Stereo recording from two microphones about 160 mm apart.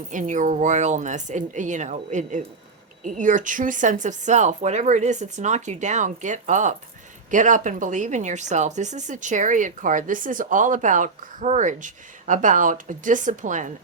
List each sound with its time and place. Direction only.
0.1 s speech: 50° right (ahead or behind)